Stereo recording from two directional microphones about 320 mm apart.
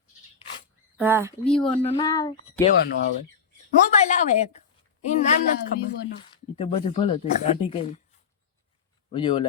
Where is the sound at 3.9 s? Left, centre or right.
Left.